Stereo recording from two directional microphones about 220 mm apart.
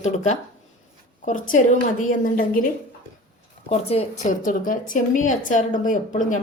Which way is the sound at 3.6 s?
30° left (ahead or behind).